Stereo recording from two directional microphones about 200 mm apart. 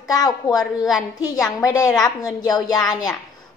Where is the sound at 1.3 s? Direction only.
20° left (ahead or behind).